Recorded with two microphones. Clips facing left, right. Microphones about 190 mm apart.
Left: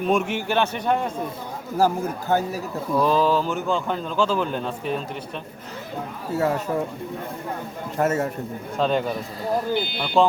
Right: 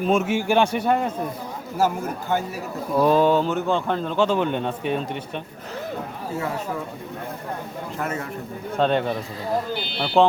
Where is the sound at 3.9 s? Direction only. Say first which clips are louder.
Right 2 dB; centre (ahead or behind).